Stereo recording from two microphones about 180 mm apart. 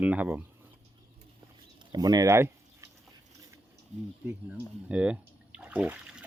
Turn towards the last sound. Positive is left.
turn(degrees=-5)  # may be behind; listen again after turning